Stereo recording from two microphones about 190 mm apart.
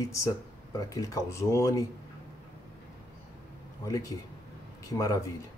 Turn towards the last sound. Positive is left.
turn(degrees=20)  # may be behind; listen again after turning